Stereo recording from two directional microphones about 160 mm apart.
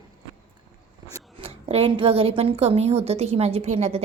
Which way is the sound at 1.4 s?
40° right (ahead or behind).